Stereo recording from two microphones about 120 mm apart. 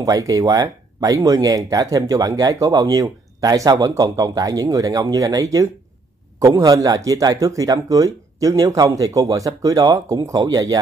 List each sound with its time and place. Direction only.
0.0 s a man's voice: 30° right (ahead or behind)